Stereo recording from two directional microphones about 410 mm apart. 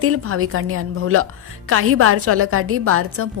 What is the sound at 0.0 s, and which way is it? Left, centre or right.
A woman's voice, right.